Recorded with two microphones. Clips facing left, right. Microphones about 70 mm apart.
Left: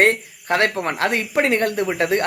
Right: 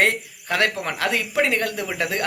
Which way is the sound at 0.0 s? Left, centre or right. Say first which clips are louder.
Left 4 dB; left.